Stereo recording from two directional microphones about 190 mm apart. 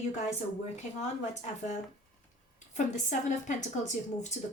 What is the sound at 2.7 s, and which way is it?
A woman's voice, 40° left (ahead or behind).